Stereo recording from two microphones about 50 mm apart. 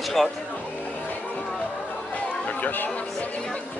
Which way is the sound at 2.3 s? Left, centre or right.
Left.